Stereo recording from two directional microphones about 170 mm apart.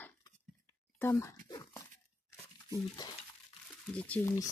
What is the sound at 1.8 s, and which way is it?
Tearing, 20° left (ahead or behind).